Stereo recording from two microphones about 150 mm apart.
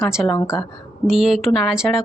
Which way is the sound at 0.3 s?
25° left (ahead or behind).